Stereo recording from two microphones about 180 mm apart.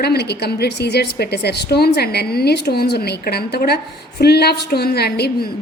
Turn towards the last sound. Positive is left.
turn(degrees=60)  # may be behind; listen again after turning